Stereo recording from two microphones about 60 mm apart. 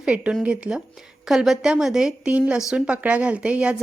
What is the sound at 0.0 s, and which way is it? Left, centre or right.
Speech, centre.